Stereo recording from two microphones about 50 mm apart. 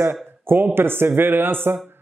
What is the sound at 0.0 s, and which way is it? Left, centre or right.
Speech, right.